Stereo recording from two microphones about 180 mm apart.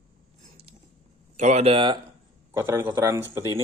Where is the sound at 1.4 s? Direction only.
40° right (ahead or behind).